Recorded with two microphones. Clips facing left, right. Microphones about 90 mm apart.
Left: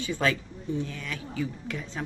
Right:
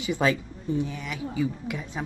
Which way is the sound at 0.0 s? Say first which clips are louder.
Right 3 dB; 15° right (ahead or behind).